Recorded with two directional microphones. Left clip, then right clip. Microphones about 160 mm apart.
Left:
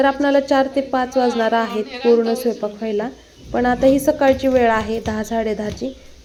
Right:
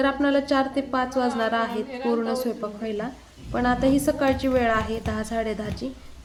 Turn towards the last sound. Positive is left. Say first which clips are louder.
# left 6 dB
turn(degrees=15)  # may be behind; listen again after turning